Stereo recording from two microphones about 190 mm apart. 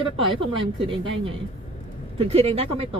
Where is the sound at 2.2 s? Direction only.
30° right (ahead or behind).